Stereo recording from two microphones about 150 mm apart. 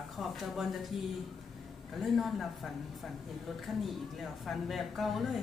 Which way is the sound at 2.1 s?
Centre (ahead or behind).